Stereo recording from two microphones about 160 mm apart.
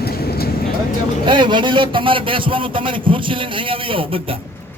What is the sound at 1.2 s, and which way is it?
A man's voice, 30° right (ahead or behind).